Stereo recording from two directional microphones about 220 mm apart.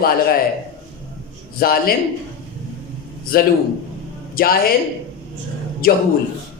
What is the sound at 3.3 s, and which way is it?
A woman's voice, 40° left (ahead or behind).